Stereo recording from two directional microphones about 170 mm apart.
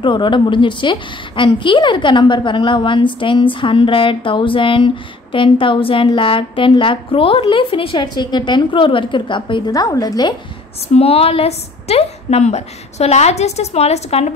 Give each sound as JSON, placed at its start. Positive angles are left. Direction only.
{"t": 0.0, "sound": "a woman's voice", "side_deg": 30}
{"t": 10.9, "sound": "a woman's voice", "side_deg": 35}